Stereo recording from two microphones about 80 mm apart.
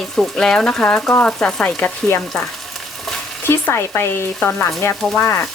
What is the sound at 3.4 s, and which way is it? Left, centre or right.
Speech, left.